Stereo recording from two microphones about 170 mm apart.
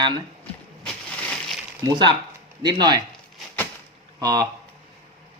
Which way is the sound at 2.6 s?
25° right (ahead or behind).